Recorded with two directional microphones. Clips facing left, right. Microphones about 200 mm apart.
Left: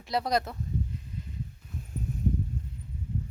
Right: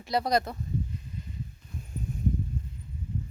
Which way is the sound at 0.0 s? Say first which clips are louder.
Right 2 dB; centre (ahead or behind).